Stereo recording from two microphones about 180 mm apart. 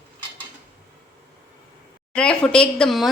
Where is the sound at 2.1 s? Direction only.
5° left (ahead or behind).